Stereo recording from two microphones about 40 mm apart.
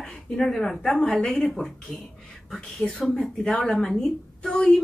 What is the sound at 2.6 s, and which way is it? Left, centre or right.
Speech, centre.